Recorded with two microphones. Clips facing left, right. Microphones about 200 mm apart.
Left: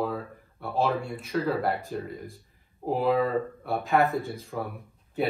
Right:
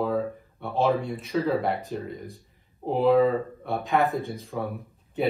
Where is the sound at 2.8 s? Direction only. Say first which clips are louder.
Right 4 dB; centre (ahead or behind).